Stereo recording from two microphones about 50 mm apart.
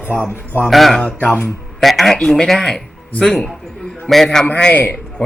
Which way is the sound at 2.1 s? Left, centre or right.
Centre.